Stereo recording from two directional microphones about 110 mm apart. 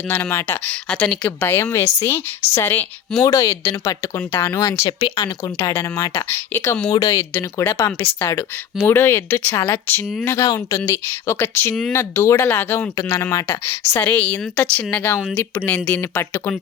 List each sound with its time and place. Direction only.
0.1 s speech: 20° left (ahead or behind)
0.7 s speech: 10° left (ahead or behind); by 4.7 s 25° left (ahead or behind)
5.0 s speech: 45° left (ahead or behind)
5.5 s speech: 25° left (ahead or behind)
6.8 s speech: 30° left (ahead or behind)
7.6 s speech: 20° left (ahead or behind)
10.2 s speech: 30° left (ahead or behind)